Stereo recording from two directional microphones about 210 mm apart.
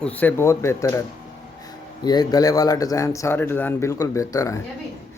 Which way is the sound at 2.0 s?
20° left (ahead or behind).